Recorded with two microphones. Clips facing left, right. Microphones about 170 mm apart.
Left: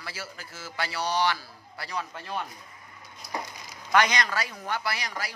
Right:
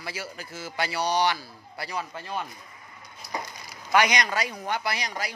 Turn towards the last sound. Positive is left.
turn(degrees=-20)  # may be behind; listen again after turning